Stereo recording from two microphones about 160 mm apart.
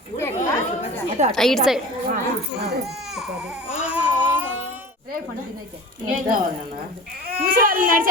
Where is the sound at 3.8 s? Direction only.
10° right (ahead or behind).